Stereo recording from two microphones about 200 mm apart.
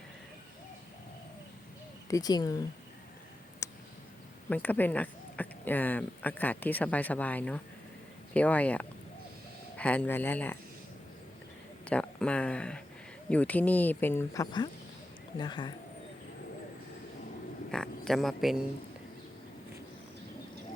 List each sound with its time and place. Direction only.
2.0 s speech: 15° left (ahead or behind)
3.6 s a sound: 15° left (ahead or behind)
4.4 s speech: 5° left (ahead or behind)
11.9 s speech: 5° left (ahead or behind); by 15.7 s 25° left (ahead or behind)
17.7 s speech: 5° left (ahead or behind)